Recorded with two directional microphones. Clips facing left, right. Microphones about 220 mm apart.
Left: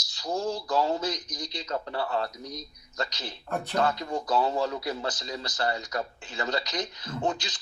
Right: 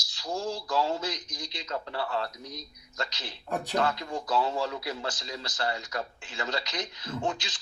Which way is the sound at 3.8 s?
40° left (ahead or behind).